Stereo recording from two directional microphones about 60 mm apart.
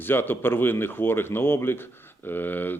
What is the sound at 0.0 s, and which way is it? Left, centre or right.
Speech, left.